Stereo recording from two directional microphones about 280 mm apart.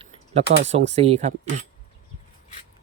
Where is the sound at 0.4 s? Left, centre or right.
Right.